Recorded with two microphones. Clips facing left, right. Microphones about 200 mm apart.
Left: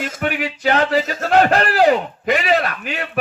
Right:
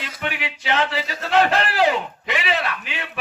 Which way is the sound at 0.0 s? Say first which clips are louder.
Left 7 dB; 45° left (ahead or behind).